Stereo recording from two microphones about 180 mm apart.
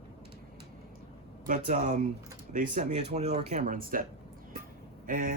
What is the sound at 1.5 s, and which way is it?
Speech, 45° right (ahead or behind).